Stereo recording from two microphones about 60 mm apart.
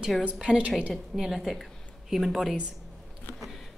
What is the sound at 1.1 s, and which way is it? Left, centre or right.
A woman's voice, centre.